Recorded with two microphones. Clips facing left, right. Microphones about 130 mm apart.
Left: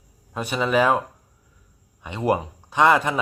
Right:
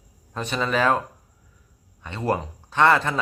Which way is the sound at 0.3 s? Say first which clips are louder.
Left 3 dB; 10° left (ahead or behind).